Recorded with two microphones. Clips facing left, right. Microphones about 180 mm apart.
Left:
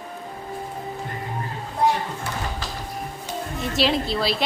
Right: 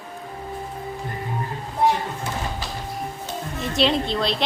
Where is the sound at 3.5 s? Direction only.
Centre (ahead or behind).